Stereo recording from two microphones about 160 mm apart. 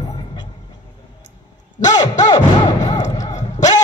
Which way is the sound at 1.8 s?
25° left (ahead or behind).